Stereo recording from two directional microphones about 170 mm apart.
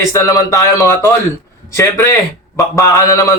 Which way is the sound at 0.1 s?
20° left (ahead or behind).